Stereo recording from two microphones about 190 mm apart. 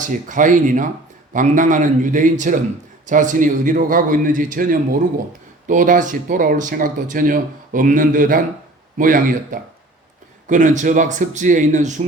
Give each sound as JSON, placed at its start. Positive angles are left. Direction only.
{"t": 0.0, "sound": "speech", "side_deg": -40}